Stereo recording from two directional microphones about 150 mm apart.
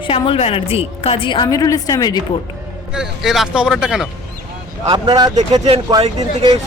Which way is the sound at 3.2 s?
Centre (ahead or behind).